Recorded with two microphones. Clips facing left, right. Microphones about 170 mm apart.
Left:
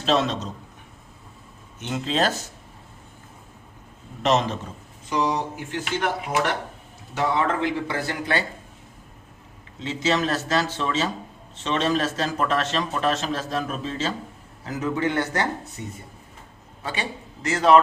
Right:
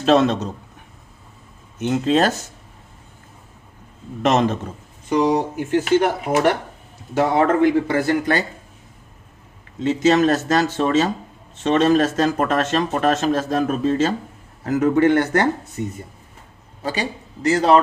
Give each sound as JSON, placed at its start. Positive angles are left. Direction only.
{"t": 0.0, "sound": "speech", "side_deg": -55}
{"t": 1.8, "sound": "speech", "side_deg": -50}
{"t": 4.2, "sound": "speech", "side_deg": -55}
{"t": 9.8, "sound": "speech", "side_deg": -50}
{"t": 16.8, "sound": "a man's voice", "side_deg": -35}